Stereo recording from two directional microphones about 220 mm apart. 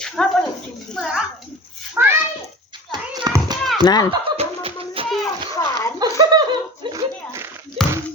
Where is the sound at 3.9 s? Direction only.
20° left (ahead or behind).